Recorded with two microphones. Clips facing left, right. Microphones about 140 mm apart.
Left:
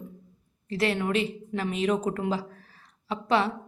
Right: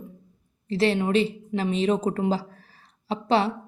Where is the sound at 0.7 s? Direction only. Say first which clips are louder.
Right 4 dB; 30° right (ahead or behind).